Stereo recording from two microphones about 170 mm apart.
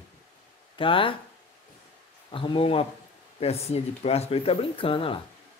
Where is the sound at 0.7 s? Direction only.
30° left (ahead or behind).